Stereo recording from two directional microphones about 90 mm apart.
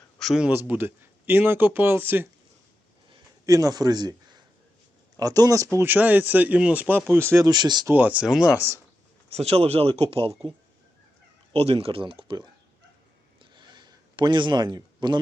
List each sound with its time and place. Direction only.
0.2 s a sound: centre (ahead or behind)
0.4 s speech: 20° right (ahead or behind)
3.4 s speech: 40° right (ahead or behind)
7.4 s speech: 50° right (ahead or behind)
7.9 s speech: 15° right (ahead or behind)
9.5 s speech: 90° right
11.5 s speech: 90° right; by 12.5 s 65° right (ahead or behind)
13.4 s a sound: 60° right (ahead or behind)